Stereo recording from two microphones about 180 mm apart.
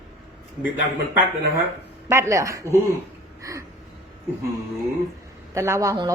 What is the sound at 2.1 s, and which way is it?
Speech, 15° right (ahead or behind).